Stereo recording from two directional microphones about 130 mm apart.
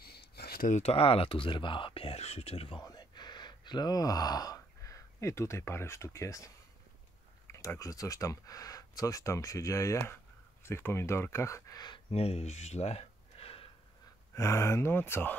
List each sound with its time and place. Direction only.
0.6 s speech: 75° left (ahead or behind)
0.8 s speech: 50° left (ahead or behind)
2.8 s speech: 30° left (ahead or behind)
12.1 s speech: 50° left (ahead or behind)
14.3 s speech: 20° left (ahead or behind)